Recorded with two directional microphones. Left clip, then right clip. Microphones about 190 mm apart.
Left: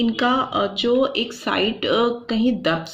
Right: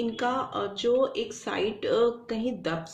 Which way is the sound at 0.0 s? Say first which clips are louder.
Left 8 dB; 35° left (ahead or behind).